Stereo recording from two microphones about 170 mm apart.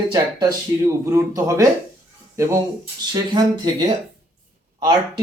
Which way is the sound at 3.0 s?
25° right (ahead or behind).